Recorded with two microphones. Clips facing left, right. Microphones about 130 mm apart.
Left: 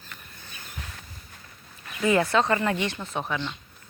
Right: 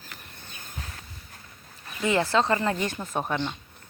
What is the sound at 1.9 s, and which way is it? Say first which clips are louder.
Speech: left 2 dB; 25° right (ahead or behind).